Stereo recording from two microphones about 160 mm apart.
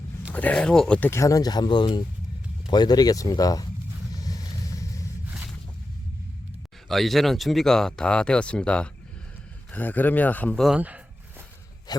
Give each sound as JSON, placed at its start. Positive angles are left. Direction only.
{"t": 0.3, "sound": "speech", "side_deg": 10}
{"t": 4.2, "sound": "vehicle", "side_deg": 20}
{"t": 6.8, "sound": "speech", "side_deg": 0}
{"t": 11.9, "sound": "a sound", "side_deg": 25}